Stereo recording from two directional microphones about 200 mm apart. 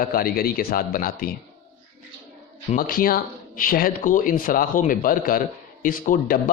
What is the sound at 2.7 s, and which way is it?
A man's voice, 45° left (ahead or behind).